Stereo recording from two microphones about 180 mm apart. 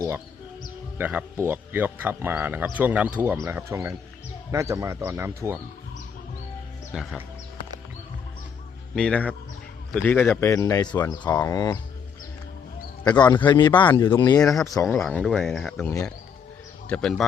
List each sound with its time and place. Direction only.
0.9 s speech: 10° right (ahead or behind)
6.9 s speech: 5° right (ahead or behind)
9.0 s a man's voice: 5° left (ahead or behind)
13.1 s a man's voice: 25° left (ahead or behind)
14.9 s speech: 5° left (ahead or behind)
16.9 s speech: centre (ahead or behind)